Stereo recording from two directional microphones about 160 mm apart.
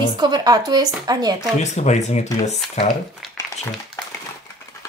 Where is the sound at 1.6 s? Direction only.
45° left (ahead or behind).